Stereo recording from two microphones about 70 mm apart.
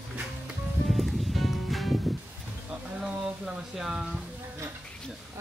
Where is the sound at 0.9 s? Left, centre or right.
Centre.